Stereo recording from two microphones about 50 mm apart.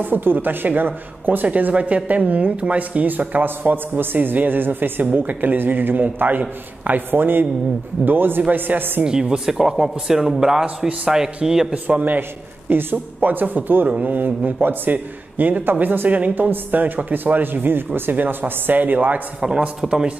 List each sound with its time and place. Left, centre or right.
0.0 s a man's voice: right
9.0 s a man's voice: centre
11.7 s a man's voice: right
19.4 s a man's voice: centre